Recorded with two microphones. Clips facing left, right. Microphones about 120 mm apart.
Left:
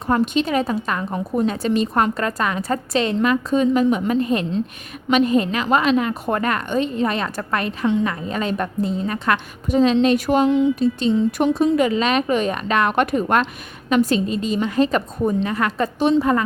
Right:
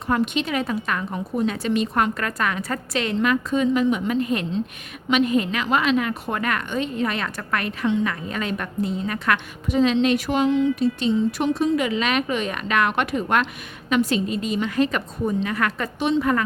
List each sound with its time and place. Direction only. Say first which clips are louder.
0.1 s a woman's voice: left 4 dB; 35° left (ahead or behind)
9.6 s a woman's voice: left 3 dB; 40° left (ahead or behind)